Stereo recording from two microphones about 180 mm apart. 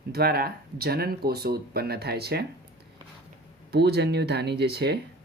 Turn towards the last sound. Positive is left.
turn(degrees=-65)  # may be behind; listen again after turning